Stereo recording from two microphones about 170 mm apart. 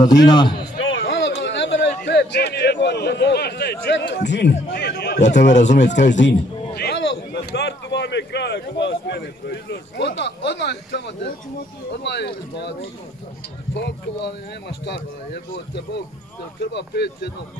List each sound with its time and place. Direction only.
0.0 s a man's voice: 25° left (ahead or behind)
0.6 s a sound: 90° left
2.0 s a man's voice: 80° left
5.5 s speech: 45° left (ahead or behind)
6.1 s a man's voice: 80° left
13.7 s speech: 90° left
15.3 s speech: 75° left (ahead or behind)
16.7 s a man's voice: 85° left